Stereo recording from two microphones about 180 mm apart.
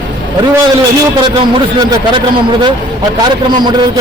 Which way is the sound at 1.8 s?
25° right (ahead or behind).